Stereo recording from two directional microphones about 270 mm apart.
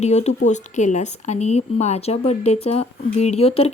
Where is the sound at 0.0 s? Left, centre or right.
Left.